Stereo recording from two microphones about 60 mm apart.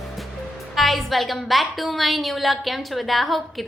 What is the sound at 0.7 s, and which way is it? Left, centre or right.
A woman's voice, centre.